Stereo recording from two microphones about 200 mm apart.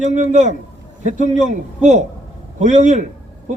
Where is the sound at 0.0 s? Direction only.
35° right (ahead or behind).